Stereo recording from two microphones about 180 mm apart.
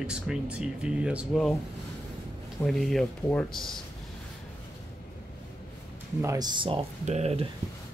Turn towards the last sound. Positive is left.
turn(degrees=-35)  # may be behind; listen again after turning